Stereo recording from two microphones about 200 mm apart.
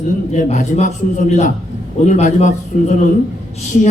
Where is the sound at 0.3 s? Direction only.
35° left (ahead or behind).